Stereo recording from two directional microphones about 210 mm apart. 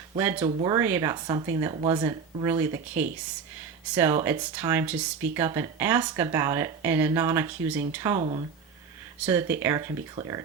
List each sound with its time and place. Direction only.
0.2 s speech: 10° right (ahead or behind)
9.2 s speech: 10° right (ahead or behind)